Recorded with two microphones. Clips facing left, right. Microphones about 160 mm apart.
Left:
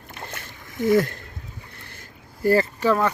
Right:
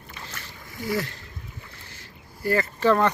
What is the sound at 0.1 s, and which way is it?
Boat, 55° left (ahead or behind).